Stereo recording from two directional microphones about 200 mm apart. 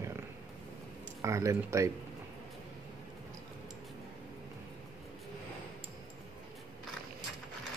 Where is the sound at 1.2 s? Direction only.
15° right (ahead or behind).